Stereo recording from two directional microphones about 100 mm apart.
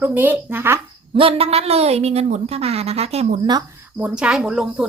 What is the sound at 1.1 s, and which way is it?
A woman's voice, 70° right (ahead or behind).